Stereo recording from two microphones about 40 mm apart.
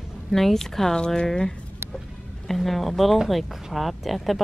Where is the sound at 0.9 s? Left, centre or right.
Centre.